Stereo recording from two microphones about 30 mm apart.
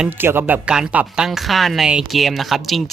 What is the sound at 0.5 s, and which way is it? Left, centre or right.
Speech, right.